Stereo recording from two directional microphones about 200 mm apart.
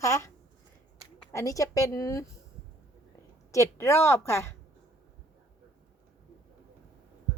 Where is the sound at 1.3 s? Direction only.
15° left (ahead or behind).